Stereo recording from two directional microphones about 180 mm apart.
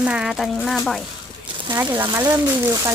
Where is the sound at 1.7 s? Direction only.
10° right (ahead or behind).